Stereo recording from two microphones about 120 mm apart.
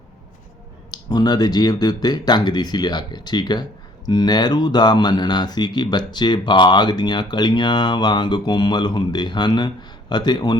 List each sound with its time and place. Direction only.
0.9 s speech: 35° left (ahead or behind)